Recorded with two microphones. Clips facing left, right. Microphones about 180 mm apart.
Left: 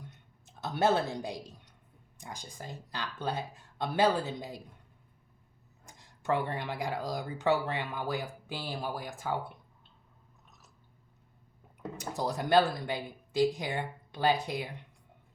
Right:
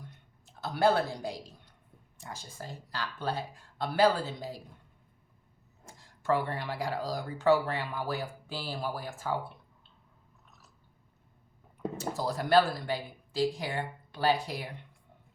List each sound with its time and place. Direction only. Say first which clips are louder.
0.4 s speech: right 2 dB; 20° left (ahead or behind)
5.8 s speech: right 2 dB; 20° left (ahead or behind)
11.9 s speech: even; 20° left (ahead or behind)